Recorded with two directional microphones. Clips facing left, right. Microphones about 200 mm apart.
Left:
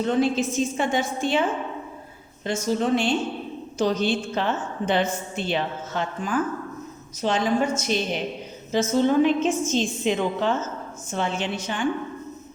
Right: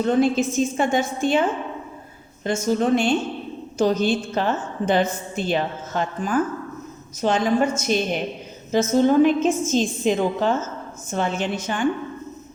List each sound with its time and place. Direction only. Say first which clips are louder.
0.0 s a woman's voice: right 3 dB; 50° right (ahead or behind)
2.4 s a woman's voice: right 3 dB; 50° right (ahead or behind)